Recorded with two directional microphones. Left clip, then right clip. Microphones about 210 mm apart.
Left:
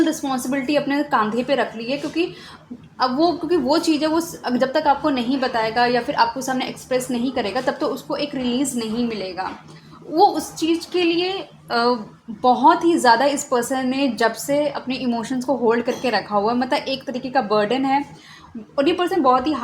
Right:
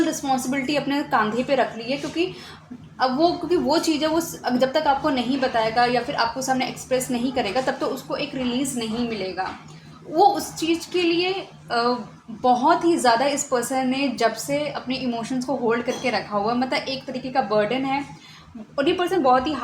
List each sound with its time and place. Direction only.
0.0 s a woman's voice: 20° left (ahead or behind)
10.2 s a woman's voice: 25° left (ahead or behind)